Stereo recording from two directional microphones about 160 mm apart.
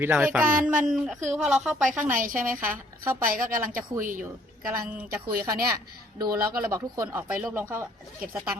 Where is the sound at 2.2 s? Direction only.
60° right (ahead or behind).